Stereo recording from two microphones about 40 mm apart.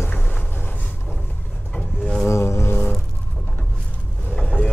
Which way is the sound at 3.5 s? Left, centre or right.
Left.